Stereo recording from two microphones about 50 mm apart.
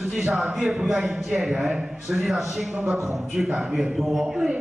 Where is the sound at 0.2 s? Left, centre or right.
Centre.